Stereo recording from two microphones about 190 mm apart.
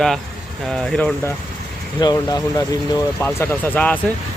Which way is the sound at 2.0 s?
20° left (ahead or behind).